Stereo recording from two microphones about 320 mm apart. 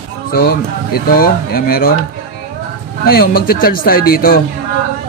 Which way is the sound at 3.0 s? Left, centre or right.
Left.